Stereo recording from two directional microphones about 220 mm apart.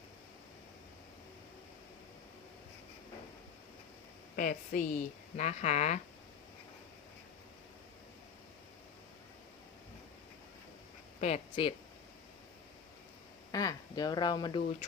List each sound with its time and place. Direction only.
4.4 s speech: 40° left (ahead or behind)
11.2 s speech: 25° left (ahead or behind)
13.5 s speech: 15° left (ahead or behind)